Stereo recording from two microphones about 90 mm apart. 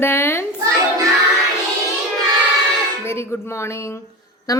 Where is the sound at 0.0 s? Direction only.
25° left (ahead or behind).